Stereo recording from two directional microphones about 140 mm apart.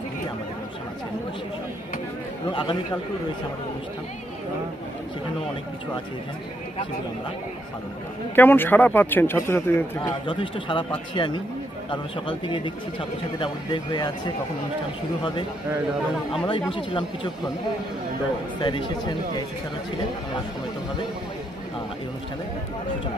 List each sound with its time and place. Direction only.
2.5 s speech: 35° left (ahead or behind)
8.4 s speech: 15° left (ahead or behind)
10.2 s speech: 35° left (ahead or behind)
16.3 s speech: 40° left (ahead or behind)
18.6 s speech: 35° left (ahead or behind)